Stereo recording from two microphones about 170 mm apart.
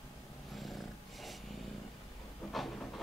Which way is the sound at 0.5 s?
Centre (ahead or behind).